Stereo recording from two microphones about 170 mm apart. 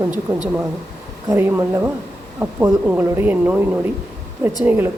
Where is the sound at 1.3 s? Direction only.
15° right (ahead or behind).